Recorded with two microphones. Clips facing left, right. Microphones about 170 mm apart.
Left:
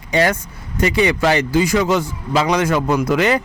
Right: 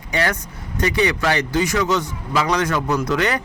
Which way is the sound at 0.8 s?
25° left (ahead or behind).